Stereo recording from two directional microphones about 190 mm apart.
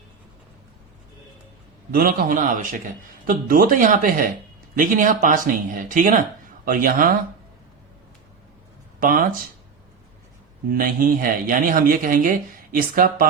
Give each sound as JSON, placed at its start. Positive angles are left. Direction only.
{"t": 1.9, "sound": "speech", "side_deg": -50}
{"t": 9.0, "sound": "speech", "side_deg": -50}
{"t": 10.7, "sound": "speech", "side_deg": -45}